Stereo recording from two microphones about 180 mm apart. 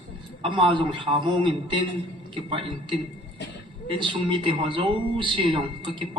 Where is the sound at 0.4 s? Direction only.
30° right (ahead or behind).